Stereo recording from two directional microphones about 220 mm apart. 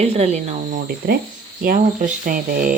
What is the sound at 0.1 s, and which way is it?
Speech, 30° right (ahead or behind).